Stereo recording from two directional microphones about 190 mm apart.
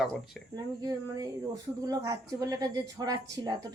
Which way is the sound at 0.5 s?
20° right (ahead or behind).